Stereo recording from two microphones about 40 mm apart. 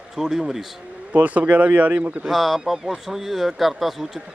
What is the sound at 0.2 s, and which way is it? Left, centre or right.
Speech, centre.